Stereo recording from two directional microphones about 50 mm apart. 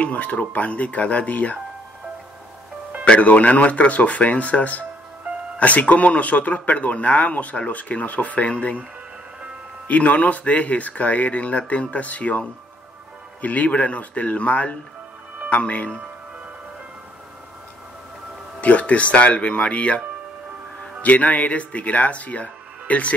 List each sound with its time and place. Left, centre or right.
0.0 s speech: left
3.1 s speech: left
9.8 s speech: left
18.6 s speech: left
21.0 s speech: left